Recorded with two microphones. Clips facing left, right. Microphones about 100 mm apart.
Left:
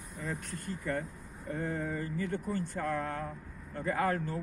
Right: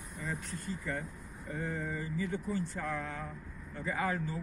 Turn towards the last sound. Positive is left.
turn(degrees=55)  # may be behind; listen again after turning